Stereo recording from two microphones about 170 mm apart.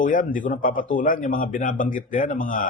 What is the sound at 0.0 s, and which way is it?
A man's voice, 50° left (ahead or behind).